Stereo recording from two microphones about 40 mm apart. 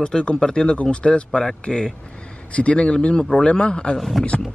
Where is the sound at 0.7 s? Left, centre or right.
Left.